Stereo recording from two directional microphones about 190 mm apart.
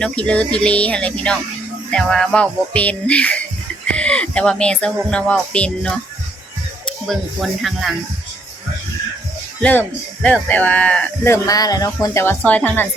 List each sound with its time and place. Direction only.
0.0 s speech: 5° left (ahead or behind)
1.9 s music: 5° left (ahead or behind)
3.8 s speech: 5° left (ahead or behind)
7.1 s music: centre (ahead or behind)
9.6 s speech: 5° left (ahead or behind)